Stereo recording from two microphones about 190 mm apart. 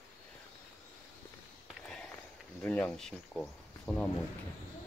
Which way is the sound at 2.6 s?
5° left (ahead or behind).